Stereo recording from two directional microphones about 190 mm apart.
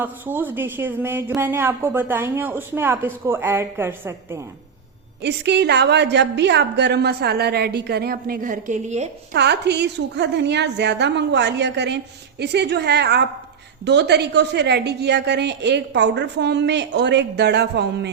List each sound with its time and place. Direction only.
0.0 s speech: 10° right (ahead or behind)
5.2 s a woman's voice: 65° right (ahead or behind); by 9.0 s 40° right (ahead or behind)
9.3 s a woman's voice: 65° right (ahead or behind)